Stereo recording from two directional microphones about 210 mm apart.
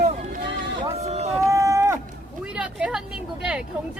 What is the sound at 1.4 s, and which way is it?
Run, 15° right (ahead or behind).